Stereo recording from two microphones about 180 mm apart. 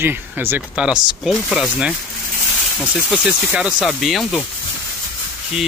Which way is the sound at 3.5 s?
5° right (ahead or behind).